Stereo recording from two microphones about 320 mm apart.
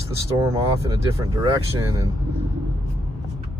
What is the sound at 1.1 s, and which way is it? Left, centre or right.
Speech, centre.